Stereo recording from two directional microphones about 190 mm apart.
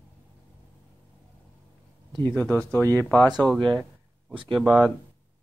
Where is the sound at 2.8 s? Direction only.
15° right (ahead or behind).